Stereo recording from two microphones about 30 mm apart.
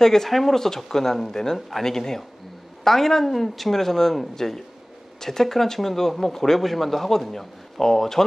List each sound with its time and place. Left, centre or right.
0.0 s speech: centre